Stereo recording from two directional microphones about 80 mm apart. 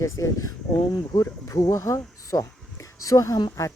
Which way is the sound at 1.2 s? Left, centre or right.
Left.